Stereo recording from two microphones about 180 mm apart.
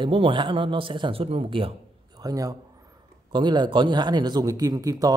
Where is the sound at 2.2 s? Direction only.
20° right (ahead or behind).